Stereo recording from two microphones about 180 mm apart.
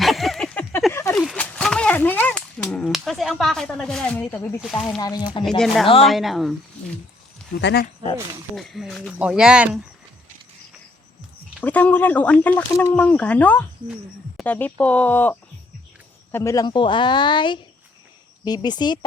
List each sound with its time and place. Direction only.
0.0 s a sound: centre (ahead or behind)
4.9 s speech: 20° left (ahead or behind)
5.5 s speech: centre (ahead or behind)
5.8 s a woman's voice: 30° left (ahead or behind)
6.1 s speech: centre (ahead or behind)
7.6 s speech: 70° left (ahead or behind)
8.5 s speech: centre (ahead or behind)
11.6 s speech: 10° left (ahead or behind); by 18.9 s 25° left (ahead or behind)